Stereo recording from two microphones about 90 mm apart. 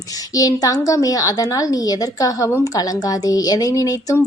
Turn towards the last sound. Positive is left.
turn(degrees=40)  # may be behind; listen again after turning